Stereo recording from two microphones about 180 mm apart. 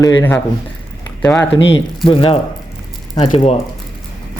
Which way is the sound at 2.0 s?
30° left (ahead or behind).